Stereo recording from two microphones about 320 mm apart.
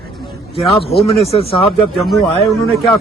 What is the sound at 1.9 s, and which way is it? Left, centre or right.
A man's voice, centre.